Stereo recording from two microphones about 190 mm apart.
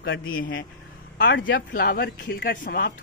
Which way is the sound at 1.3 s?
75° left (ahead or behind).